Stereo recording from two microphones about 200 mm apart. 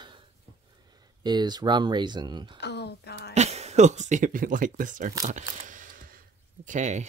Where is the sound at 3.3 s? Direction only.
35° right (ahead or behind).